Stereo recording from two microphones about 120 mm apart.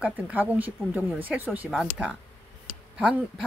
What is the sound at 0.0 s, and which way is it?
Speech, 15° right (ahead or behind).